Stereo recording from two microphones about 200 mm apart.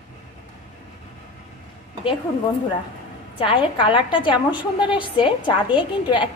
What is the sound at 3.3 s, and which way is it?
A woman's voice, 25° left (ahead or behind).